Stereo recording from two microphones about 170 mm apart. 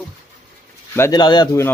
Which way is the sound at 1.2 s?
25° left (ahead or behind).